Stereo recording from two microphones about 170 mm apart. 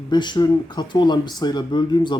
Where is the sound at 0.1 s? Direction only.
25° left (ahead or behind).